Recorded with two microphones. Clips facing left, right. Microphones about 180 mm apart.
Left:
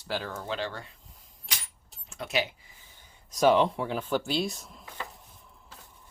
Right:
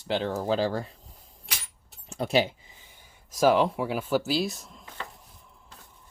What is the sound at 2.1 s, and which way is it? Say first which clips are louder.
Keys jangling: right 6 dB; 35° right (ahead or behind).